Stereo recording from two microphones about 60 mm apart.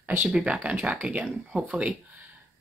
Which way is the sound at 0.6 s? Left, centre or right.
Right.